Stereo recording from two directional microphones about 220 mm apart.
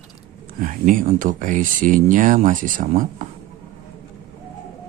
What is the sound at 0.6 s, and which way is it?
Speech, 40° right (ahead or behind).